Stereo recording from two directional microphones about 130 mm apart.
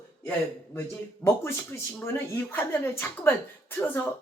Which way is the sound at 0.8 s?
20° left (ahead or behind).